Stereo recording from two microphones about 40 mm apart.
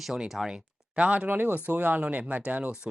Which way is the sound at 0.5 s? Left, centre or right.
Right.